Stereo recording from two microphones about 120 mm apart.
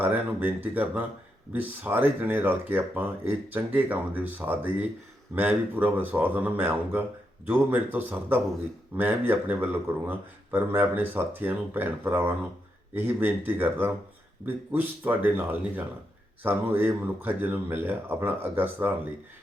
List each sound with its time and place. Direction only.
0.0 s speech: 15° right (ahead or behind)